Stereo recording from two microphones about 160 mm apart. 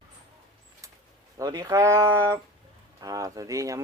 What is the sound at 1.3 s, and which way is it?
Speech, 25° right (ahead or behind).